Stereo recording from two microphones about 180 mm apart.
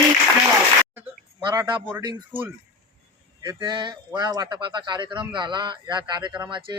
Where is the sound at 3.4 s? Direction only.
25° right (ahead or behind).